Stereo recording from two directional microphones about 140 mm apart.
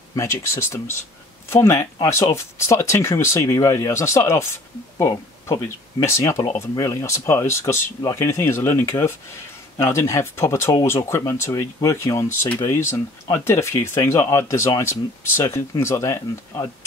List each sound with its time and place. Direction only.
0.1 s speech: 20° left (ahead or behind)